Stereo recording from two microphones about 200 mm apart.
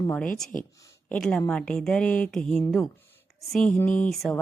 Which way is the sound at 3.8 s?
40° left (ahead or behind).